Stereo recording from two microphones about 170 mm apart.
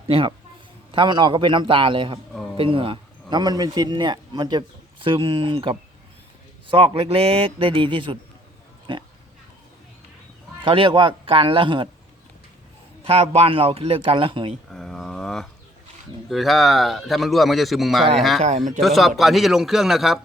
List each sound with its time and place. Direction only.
0.1 s a man's voice: 30° right (ahead or behind)
10.6 s a man's voice: 30° right (ahead or behind)
13.1 s a man's voice: 35° right (ahead or behind)
14.7 s a sound: centre (ahead or behind)
16.3 s a man's voice: centre (ahead or behind)
18.3 s a man's voice: 45° right (ahead or behind)
18.8 s a man's voice: centre (ahead or behind)